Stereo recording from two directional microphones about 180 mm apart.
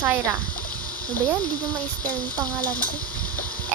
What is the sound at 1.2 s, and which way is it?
Speech, 10° left (ahead or behind).